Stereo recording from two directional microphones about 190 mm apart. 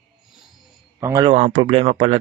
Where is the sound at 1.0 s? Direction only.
15° right (ahead or behind).